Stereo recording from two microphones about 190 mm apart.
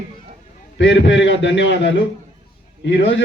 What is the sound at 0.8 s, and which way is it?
A man's voice, 75° left (ahead or behind).